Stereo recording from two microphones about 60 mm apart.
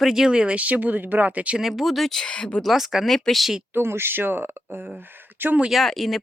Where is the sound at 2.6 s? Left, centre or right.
Centre.